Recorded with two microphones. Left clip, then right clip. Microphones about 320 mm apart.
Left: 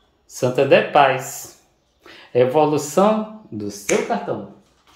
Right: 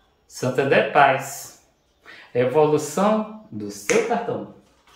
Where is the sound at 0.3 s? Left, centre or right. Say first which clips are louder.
Left 5 dB; left.